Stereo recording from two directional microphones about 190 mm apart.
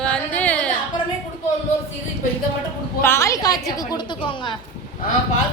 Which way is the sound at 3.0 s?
15° left (ahead or behind).